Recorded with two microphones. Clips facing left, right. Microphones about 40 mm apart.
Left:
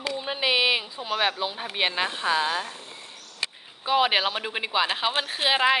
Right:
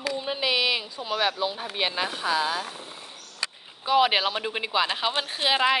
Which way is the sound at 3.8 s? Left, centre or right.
Centre.